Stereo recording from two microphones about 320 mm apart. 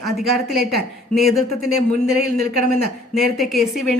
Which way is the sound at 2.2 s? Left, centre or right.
Right.